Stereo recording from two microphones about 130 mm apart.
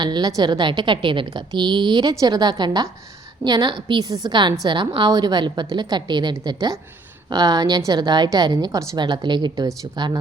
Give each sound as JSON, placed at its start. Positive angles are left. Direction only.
{"t": 0.0, "sound": "a woman's voice", "side_deg": -30}